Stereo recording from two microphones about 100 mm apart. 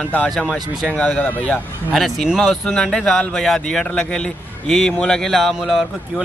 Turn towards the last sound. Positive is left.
turn(degrees=0)  # may be behind; listen again after turning